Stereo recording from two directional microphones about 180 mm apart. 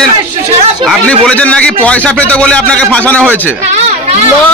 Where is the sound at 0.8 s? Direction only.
5° left (ahead or behind).